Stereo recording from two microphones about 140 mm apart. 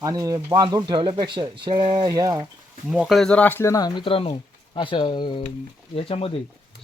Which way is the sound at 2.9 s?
Centre (ahead or behind).